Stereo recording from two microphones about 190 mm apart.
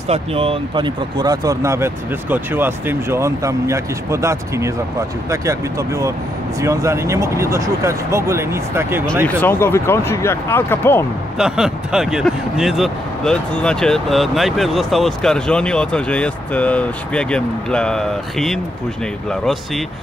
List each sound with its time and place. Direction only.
0.1 s speech: 30° right (ahead or behind); by 9.0 s 15° right (ahead or behind)
9.4 s speech: 10° left (ahead or behind)
11.3 s speech: 5° right (ahead or behind)